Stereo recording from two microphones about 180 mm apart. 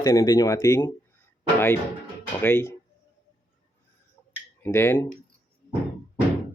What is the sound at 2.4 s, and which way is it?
Speech, 10° left (ahead or behind).